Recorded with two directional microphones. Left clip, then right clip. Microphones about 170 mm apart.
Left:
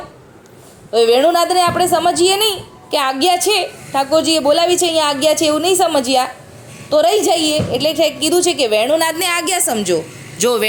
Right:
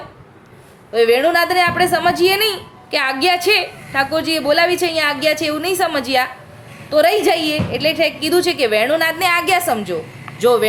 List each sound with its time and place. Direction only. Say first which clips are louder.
0.9 s a woman's voice: left 2 dB; 10° left (ahead or behind)
9.0 s a woman's voice: right 1 dB; 35° left (ahead or behind)